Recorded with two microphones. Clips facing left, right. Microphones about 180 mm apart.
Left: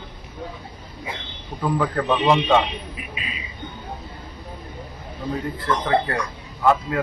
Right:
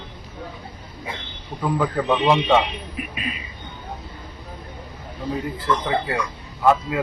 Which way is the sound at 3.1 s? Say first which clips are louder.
Right 4 dB; 50° right (ahead or behind).